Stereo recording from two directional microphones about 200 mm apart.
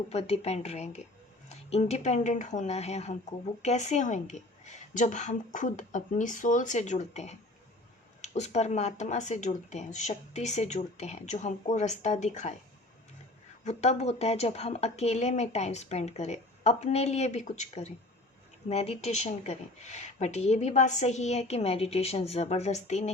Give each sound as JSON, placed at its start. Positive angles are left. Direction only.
{"t": 0.1, "sound": "speech", "side_deg": 30}
{"t": 13.7, "sound": "speech", "side_deg": 35}